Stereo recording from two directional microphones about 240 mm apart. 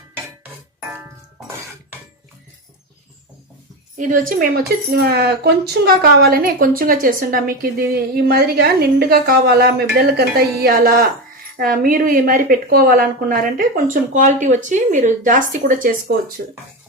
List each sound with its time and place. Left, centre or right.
3.9 s a woman's voice: right